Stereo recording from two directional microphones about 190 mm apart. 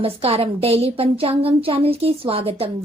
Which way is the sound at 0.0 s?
30° right (ahead or behind).